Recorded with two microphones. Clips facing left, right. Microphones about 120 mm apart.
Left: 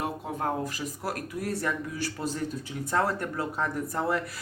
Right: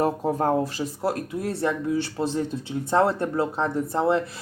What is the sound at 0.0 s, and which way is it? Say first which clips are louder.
Speech: right 8 dB; 40° right (ahead or behind).